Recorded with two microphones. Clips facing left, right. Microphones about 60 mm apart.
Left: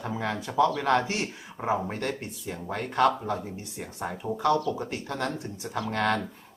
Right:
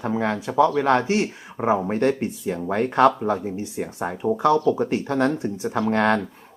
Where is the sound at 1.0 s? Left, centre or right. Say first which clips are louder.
Right 8 dB; centre.